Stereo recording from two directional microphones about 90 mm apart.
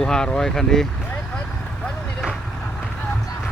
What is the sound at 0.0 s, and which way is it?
Speech, 10° left (ahead or behind).